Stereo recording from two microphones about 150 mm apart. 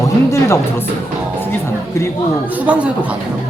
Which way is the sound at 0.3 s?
20° left (ahead or behind).